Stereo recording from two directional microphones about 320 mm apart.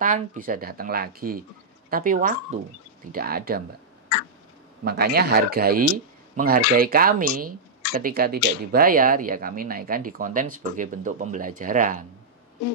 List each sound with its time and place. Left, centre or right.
0.0 s speech: right
4.8 s speech: right